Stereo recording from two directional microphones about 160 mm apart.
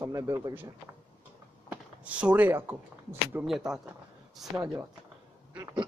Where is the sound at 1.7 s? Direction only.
10° right (ahead or behind).